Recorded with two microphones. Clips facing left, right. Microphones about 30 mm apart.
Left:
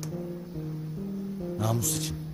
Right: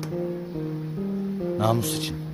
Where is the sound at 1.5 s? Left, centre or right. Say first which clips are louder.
Right 6 dB; right.